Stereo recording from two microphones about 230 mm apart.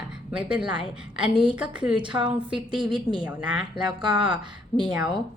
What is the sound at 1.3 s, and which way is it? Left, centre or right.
Speech, right.